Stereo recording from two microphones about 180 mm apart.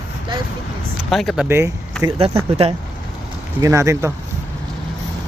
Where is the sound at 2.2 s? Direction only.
35° right (ahead or behind).